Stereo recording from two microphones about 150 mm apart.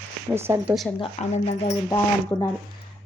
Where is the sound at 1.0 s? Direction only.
45° left (ahead or behind).